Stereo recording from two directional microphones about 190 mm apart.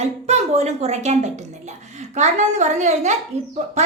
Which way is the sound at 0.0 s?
35° right (ahead or behind).